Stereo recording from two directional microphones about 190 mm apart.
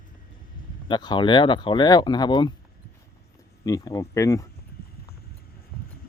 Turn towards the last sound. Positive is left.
turn(degrees=15)  # may be behind; listen again after turning